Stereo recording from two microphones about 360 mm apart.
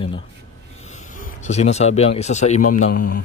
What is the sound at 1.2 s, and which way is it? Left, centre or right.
Speech, centre.